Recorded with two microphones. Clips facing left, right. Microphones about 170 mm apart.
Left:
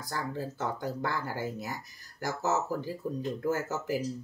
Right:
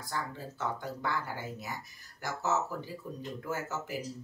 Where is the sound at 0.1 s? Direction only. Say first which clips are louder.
Left 4 dB; 40° left (ahead or behind).